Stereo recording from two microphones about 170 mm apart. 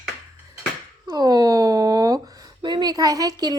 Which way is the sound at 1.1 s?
25° right (ahead or behind).